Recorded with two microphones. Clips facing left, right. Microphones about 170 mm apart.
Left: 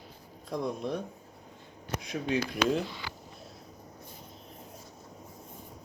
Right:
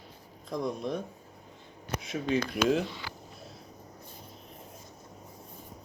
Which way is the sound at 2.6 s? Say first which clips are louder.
Right 2 dB; centre (ahead or behind).